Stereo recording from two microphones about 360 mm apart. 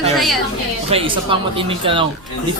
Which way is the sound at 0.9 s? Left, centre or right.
Centre.